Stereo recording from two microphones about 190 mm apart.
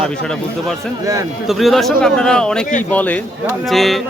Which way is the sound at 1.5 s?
Centre (ahead or behind).